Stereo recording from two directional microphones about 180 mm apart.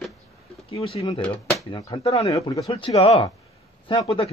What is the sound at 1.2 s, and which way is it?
Speech, 5° left (ahead or behind).